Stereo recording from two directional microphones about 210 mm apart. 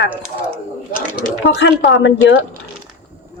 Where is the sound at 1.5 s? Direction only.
60° left (ahead or behind).